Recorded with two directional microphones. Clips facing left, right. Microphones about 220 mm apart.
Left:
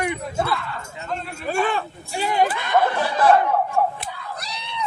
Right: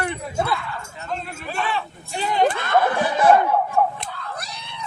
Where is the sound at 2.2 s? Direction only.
10° left (ahead or behind).